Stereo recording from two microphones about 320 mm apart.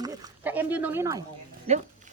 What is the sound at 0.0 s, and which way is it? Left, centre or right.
Speech, centre.